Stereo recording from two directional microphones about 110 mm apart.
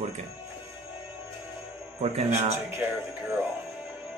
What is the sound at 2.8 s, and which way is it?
Speech, 15° right (ahead or behind).